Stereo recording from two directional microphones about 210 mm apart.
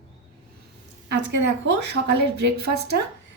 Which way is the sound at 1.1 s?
55° right (ahead or behind).